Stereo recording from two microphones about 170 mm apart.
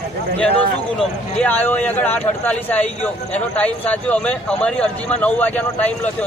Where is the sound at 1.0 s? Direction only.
10° left (ahead or behind).